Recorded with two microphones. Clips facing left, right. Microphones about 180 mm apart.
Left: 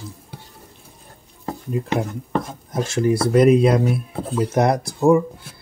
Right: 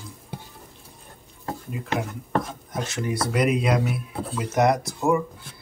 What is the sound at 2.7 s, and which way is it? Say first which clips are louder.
Speech: left 9 dB; 30° left (ahead or behind).